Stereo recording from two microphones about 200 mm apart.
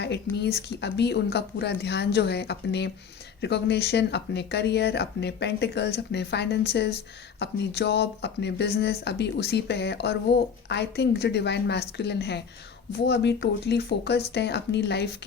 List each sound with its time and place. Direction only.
0.0 s speech: 55° left (ahead or behind)